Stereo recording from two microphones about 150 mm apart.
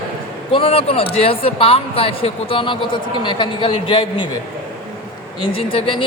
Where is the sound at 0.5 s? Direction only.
40° left (ahead or behind).